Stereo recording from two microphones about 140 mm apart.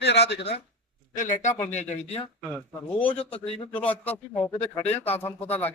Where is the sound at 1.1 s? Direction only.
65° left (ahead or behind); by 4.1 s 45° left (ahead or behind).